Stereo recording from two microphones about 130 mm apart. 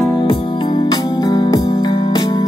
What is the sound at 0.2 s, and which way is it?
Music, 40° left (ahead or behind).